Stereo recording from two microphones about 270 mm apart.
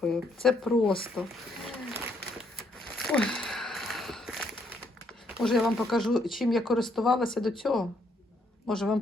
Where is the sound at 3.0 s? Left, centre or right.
Centre.